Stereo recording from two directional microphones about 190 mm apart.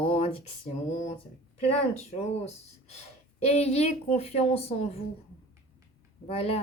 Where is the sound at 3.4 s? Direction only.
35° left (ahead or behind).